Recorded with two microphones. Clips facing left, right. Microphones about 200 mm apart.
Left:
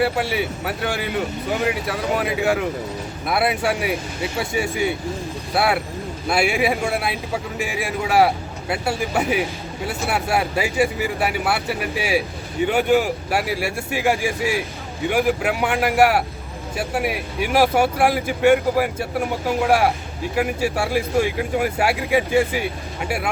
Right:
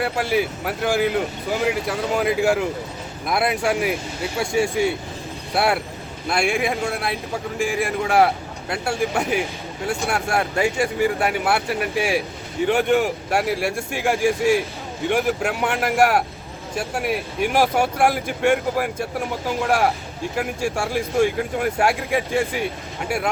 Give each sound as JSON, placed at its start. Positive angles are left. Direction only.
{"t": 0.0, "sound": "speech", "side_deg": 0}